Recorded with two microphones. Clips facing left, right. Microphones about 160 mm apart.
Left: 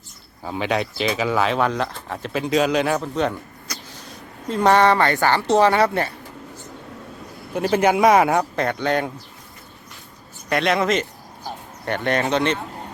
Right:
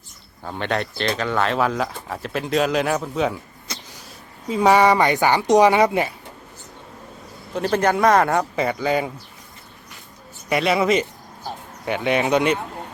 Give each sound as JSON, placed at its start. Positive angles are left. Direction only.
{"t": 0.4, "sound": "speech", "side_deg": 5}
{"t": 3.7, "sound": "a sound", "side_deg": -25}
{"t": 4.4, "sound": "speech", "side_deg": -5}
{"t": 7.5, "sound": "speech", "side_deg": 10}
{"t": 10.5, "sound": "speech", "side_deg": -5}